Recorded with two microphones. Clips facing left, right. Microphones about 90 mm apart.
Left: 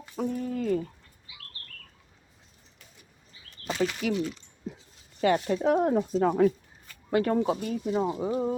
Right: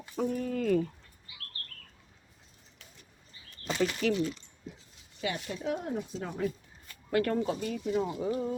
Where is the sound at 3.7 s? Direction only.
15° left (ahead or behind).